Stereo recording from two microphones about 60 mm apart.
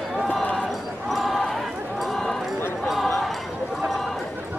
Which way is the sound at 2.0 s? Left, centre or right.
Centre.